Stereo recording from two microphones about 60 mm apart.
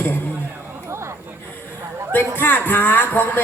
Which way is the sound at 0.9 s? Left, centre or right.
Right.